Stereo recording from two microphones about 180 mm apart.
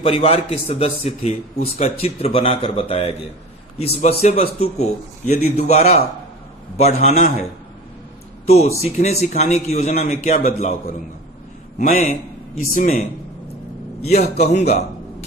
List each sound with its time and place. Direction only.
0.0 s a man's voice: 30° left (ahead or behind)
8.4 s a man's voice: 35° left (ahead or behind)
11.8 s a man's voice: 50° left (ahead or behind)
14.0 s a man's voice: 60° left (ahead or behind)
14.4 s a man's voice: 40° left (ahead or behind)